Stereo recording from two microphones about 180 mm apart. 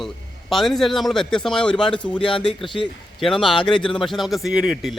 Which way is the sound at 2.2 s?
30° left (ahead or behind).